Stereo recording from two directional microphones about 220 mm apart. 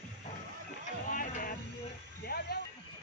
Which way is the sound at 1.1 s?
35° left (ahead or behind).